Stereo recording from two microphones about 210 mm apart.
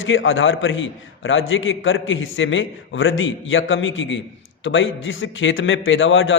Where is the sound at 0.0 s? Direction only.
65° left (ahead or behind).